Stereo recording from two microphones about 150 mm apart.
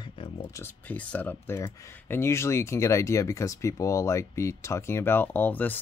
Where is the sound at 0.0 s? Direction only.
35° left (ahead or behind).